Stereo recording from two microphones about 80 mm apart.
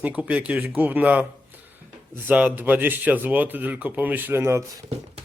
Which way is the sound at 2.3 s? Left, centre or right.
Right.